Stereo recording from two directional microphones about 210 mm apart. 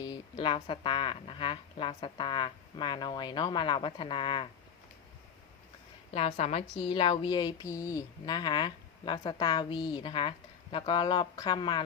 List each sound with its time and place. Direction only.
0.0 s a woman's voice: 25° left (ahead or behind)
6.1 s a woman's voice: 30° left (ahead or behind)